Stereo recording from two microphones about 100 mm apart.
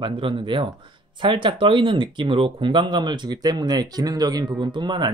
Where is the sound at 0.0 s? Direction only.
55° right (ahead or behind).